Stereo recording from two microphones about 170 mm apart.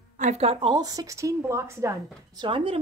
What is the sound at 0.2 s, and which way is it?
A woman's voice, 40° right (ahead or behind).